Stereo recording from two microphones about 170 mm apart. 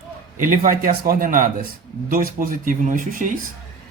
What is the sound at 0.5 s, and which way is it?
Speech, 55° right (ahead or behind).